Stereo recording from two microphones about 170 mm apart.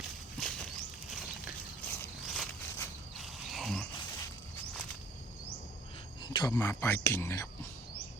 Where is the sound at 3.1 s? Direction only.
Centre (ahead or behind).